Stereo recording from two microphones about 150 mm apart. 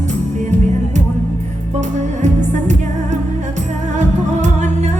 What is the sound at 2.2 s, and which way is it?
Music, 50° right (ahead or behind).